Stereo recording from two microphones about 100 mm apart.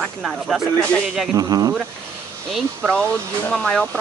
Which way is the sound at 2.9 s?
10° left (ahead or behind).